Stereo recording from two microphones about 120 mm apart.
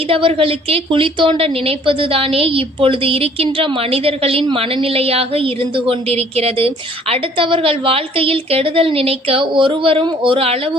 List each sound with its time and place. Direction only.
0.1 s a woman's voice: 50° right (ahead or behind)
7.1 s a woman's voice: 45° right (ahead or behind)